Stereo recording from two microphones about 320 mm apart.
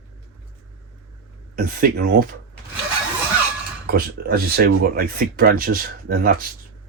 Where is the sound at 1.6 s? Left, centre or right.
Right.